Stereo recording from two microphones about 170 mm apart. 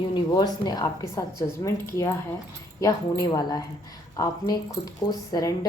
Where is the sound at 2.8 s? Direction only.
20° left (ahead or behind).